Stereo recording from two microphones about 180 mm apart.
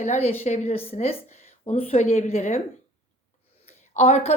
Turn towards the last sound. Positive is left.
turn(degrees=35)  # may be behind; listen again after turning